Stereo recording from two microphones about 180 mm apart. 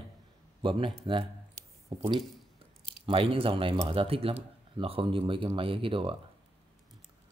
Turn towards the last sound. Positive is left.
turn(degrees=-30)  # may be behind; listen again after turning